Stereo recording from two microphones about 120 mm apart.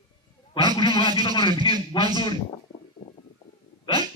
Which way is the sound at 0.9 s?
35° right (ahead or behind).